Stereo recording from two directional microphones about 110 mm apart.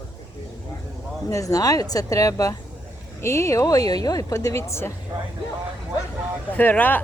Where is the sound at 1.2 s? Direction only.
30° left (ahead or behind).